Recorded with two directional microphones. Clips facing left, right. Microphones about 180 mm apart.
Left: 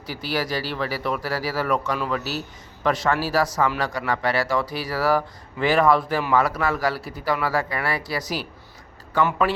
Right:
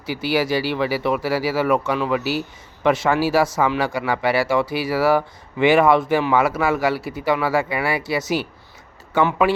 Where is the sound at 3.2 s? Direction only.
25° right (ahead or behind).